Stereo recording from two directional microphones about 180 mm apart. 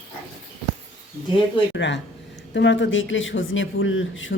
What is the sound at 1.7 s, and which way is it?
Speech, 80° left.